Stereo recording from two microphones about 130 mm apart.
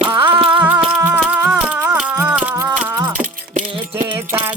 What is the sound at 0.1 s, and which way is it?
Music, 15° right (ahead or behind).